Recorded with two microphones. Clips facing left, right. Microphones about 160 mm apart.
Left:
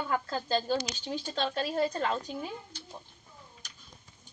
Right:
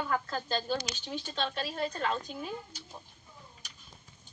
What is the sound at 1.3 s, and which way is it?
Speech, 35° left (ahead or behind).